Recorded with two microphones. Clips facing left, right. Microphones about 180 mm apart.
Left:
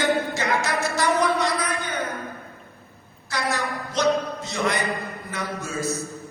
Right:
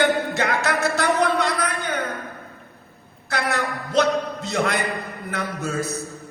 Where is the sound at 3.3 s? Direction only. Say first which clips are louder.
Right 2 dB; 60° right (ahead or behind).